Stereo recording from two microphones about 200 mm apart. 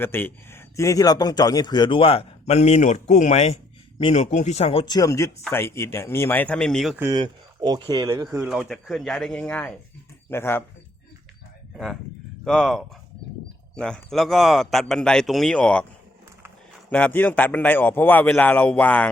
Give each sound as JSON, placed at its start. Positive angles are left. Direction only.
{"t": 0.0, "sound": "a man's voice", "side_deg": 10}
{"t": 6.9, "sound": "speech", "side_deg": -15}
{"t": 8.4, "sound": "a man's voice", "side_deg": 0}
{"t": 12.5, "sound": "a man's voice", "side_deg": 0}
{"t": 16.9, "sound": "a man's voice", "side_deg": 10}